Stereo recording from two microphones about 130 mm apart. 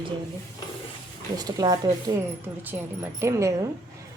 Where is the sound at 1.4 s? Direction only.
30° right (ahead or behind).